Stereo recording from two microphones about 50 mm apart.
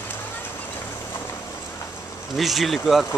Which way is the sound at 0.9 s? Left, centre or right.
Left.